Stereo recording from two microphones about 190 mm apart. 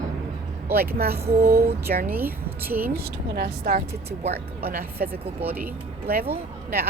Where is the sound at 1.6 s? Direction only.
55° right (ahead or behind).